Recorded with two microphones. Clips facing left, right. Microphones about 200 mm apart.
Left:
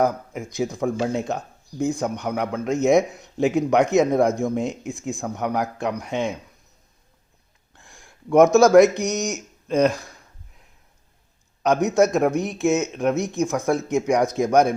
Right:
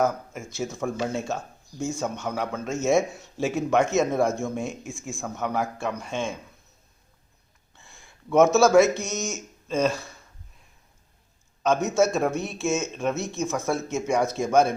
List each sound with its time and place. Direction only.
0.0 s speech: 15° left (ahead or behind)
7.8 s speech: 15° left (ahead or behind)
11.6 s speech: 15° left (ahead or behind)